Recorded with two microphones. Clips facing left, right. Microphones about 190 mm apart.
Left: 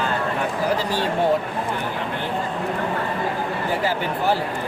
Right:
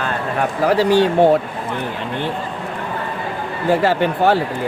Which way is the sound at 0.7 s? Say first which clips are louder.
Right 9 dB; 75° right (ahead or behind).